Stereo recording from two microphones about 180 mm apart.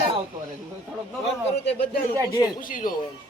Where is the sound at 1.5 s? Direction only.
35° left (ahead or behind).